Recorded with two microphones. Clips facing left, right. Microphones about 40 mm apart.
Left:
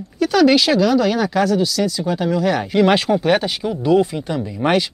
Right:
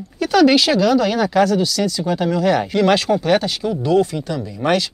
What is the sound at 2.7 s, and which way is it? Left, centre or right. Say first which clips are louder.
Speech: left 1 dB; centre.